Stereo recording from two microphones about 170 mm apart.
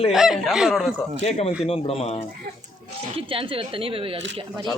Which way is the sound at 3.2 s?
30° right (ahead or behind).